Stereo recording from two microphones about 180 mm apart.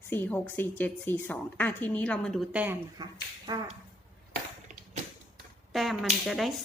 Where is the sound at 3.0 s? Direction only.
20° right (ahead or behind).